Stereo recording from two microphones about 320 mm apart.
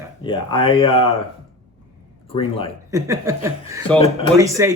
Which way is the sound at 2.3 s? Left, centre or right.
Centre.